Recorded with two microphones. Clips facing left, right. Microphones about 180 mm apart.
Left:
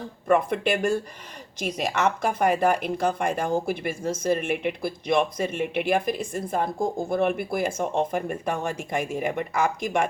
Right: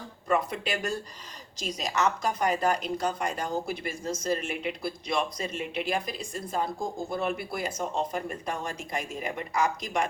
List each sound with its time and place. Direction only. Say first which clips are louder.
0.3 s speech: left 6 dB; 55° left (ahead or behind)